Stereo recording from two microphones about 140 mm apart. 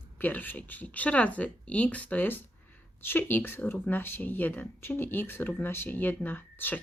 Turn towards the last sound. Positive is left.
turn(degrees=15)  # may be behind; listen again after turning